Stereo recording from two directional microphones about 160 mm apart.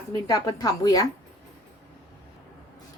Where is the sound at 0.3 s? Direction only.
20° left (ahead or behind).